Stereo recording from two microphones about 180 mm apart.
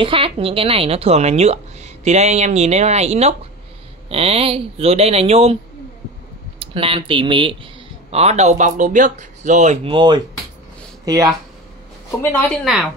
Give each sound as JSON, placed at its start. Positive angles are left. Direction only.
{"t": 0.0, "sound": "speech", "side_deg": -30}
{"t": 6.6, "sound": "speech", "side_deg": -30}
{"t": 9.9, "sound": "speech", "side_deg": -25}
{"t": 12.2, "sound": "speech", "side_deg": 10}